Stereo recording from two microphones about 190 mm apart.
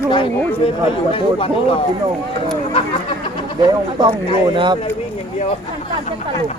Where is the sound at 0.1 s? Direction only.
25° left (ahead or behind).